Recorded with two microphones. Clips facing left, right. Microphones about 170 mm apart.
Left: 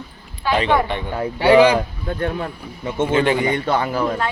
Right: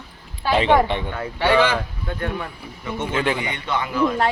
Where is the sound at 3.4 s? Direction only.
40° left (ahead or behind).